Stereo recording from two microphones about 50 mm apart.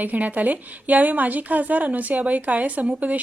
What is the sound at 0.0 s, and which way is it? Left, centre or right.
A woman's voice, right.